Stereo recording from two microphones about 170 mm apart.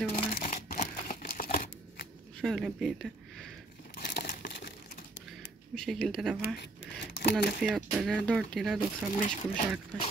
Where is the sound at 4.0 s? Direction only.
60° left (ahead or behind).